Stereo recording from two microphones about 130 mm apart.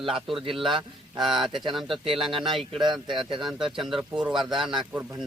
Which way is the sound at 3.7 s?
5° right (ahead or behind).